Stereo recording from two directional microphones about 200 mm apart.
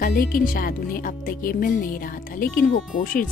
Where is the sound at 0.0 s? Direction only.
45° left (ahead or behind).